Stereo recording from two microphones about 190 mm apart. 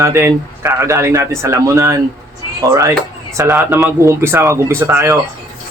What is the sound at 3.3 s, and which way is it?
Speech, 15° right (ahead or behind).